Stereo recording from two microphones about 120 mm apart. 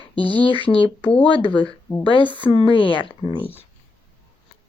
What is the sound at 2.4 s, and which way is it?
Speech, 45° left (ahead or behind).